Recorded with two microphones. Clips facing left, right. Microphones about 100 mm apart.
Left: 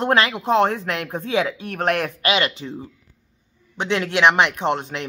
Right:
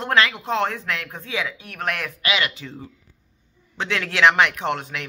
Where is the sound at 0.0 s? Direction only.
20° left (ahead or behind).